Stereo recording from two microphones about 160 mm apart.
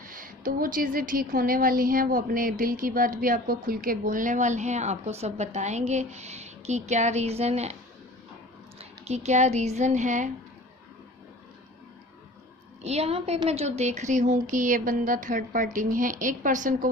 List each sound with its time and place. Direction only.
0.0 s speech: 60° right (ahead or behind); by 7.8 s 40° right (ahead or behind)
8.8 s speech: 45° right (ahead or behind)
12.8 s a woman's voice: 40° right (ahead or behind)